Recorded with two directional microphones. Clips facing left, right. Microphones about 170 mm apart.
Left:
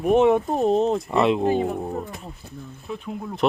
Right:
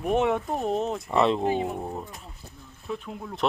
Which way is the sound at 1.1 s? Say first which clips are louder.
Left 1 dB; centre (ahead or behind).